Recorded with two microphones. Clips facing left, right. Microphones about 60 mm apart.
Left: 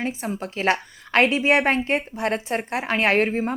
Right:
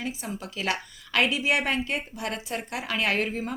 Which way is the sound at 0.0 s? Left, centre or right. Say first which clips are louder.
Left 6 dB; left.